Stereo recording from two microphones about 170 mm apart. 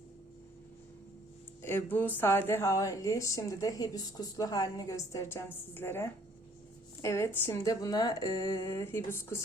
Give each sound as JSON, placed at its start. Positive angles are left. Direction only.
{"t": 1.6, "sound": "a woman's voice", "side_deg": 10}